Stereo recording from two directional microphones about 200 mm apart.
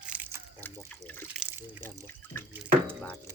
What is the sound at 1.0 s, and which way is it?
Water, 10° left (ahead or behind).